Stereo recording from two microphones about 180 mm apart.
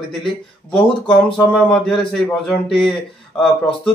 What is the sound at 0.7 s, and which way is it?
Speech, 30° left (ahead or behind).